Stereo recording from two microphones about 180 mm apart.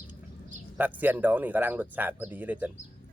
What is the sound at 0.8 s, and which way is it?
Speech, 10° right (ahead or behind).